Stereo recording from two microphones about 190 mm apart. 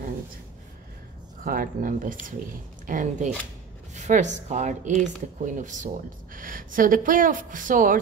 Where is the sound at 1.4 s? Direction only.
45° right (ahead or behind).